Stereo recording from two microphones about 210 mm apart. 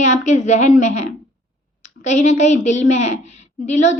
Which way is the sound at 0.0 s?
35° left (ahead or behind).